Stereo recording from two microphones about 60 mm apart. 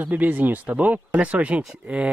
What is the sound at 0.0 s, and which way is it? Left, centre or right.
Speech, right.